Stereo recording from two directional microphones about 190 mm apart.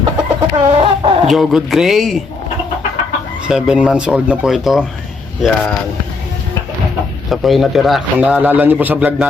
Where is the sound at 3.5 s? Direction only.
5° right (ahead or behind).